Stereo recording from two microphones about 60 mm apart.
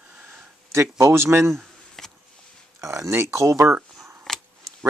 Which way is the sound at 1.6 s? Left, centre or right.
Centre.